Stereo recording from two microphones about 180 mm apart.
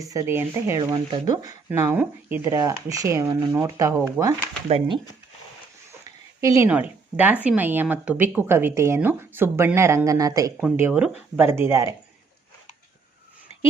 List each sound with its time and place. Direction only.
0.0 s speech: 20° right (ahead or behind)
6.4 s a woman's voice: 20° right (ahead or behind)